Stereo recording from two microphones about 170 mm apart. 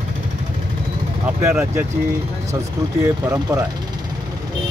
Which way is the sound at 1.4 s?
15° right (ahead or behind).